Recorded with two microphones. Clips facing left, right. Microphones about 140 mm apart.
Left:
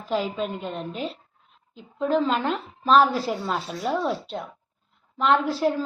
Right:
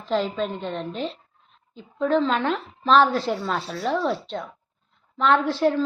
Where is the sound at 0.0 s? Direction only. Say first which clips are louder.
Right 2 dB; 5° left (ahead or behind).